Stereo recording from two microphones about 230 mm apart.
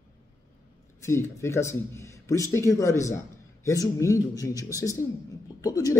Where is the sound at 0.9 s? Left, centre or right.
Centre.